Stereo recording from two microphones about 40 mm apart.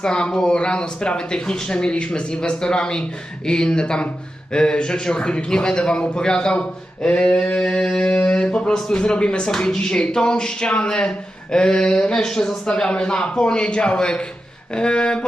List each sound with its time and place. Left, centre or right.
0.0 s speech: left
8.4 s speech: centre
12.2 s speech: centre